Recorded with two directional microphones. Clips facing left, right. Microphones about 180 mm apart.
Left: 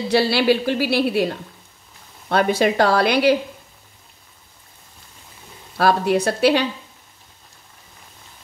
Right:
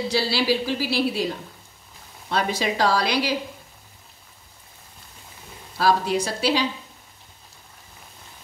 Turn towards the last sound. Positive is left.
turn(degrees=60)  # may be behind; listen again after turning